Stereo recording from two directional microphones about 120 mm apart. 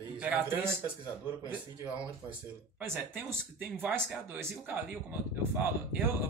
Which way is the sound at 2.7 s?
15° right (ahead or behind).